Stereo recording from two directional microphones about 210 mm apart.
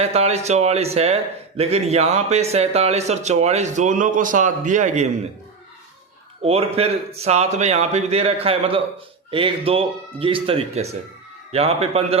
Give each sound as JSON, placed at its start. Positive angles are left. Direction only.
{"t": 0.0, "sound": "a man's voice", "side_deg": -30}
{"t": 6.4, "sound": "a man's voice", "side_deg": -30}